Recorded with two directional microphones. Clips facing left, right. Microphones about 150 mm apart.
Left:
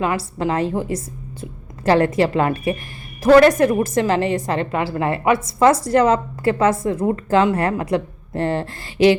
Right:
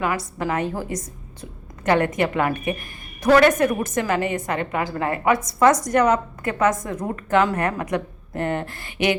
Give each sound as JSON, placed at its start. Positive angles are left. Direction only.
{"t": 0.0, "sound": "a woman's voice", "side_deg": 25}